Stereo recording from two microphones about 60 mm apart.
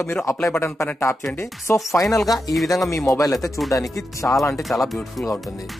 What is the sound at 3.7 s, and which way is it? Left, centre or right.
Speech, left.